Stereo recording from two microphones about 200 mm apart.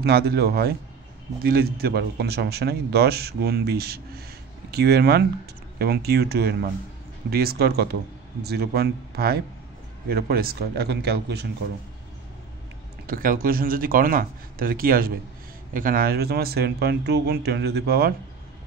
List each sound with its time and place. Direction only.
0.0 s speech: 55° right (ahead or behind)
13.0 s speech: 45° right (ahead or behind)